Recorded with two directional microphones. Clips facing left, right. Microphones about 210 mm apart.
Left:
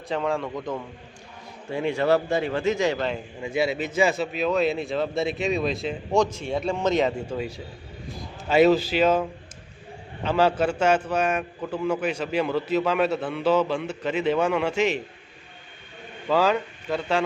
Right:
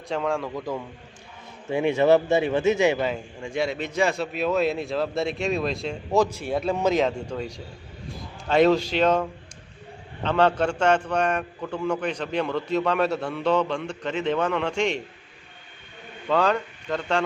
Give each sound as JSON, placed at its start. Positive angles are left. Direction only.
{"t": 0.1, "sound": "a man's voice", "side_deg": 0}
{"t": 1.7, "sound": "speech", "side_deg": -20}
{"t": 3.1, "sound": "a man's voice", "side_deg": 5}
{"t": 10.2, "sound": "a man's voice", "side_deg": 5}
{"t": 16.3, "sound": "a man's voice", "side_deg": 5}